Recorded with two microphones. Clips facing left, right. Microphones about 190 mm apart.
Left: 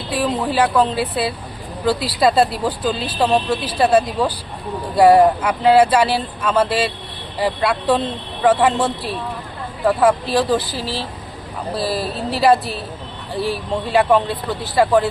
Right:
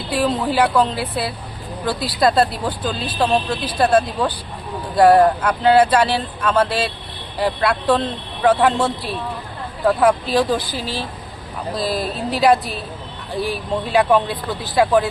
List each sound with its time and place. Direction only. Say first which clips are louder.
0.1 s speech: right 1 dB; 5° left (ahead or behind)
10.8 s speech: left 1 dB; 30° left (ahead or behind)
13.9 s speech: left 1 dB; centre (ahead or behind)